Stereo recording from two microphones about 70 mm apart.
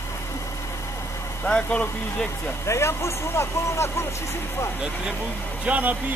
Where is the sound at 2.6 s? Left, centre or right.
Left.